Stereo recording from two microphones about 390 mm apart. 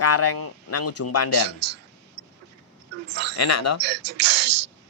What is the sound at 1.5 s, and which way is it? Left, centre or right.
Speech, right.